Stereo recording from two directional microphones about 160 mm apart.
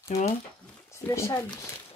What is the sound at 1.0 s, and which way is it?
Speech, 15° left (ahead or behind).